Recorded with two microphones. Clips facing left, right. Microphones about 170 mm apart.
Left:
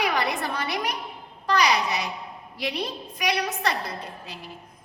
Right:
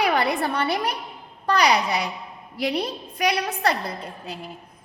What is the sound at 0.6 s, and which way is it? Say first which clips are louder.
Speech: right 4 dB; 30° right (ahead or behind).